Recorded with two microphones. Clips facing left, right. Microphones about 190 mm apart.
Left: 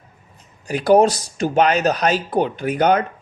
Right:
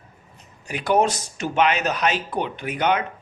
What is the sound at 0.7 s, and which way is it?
Speech, 35° left (ahead or behind).